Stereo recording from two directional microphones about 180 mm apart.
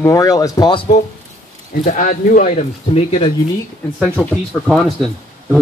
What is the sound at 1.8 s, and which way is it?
Speech, 50° left (ahead or behind).